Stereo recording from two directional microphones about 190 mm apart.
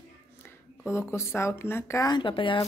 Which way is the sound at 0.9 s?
15° left (ahead or behind).